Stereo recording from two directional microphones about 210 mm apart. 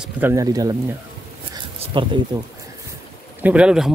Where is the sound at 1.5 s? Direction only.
25° right (ahead or behind).